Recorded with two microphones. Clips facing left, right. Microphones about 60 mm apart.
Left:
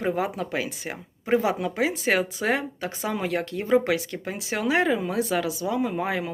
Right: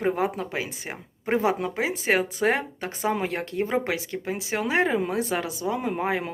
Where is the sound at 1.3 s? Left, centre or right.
Right.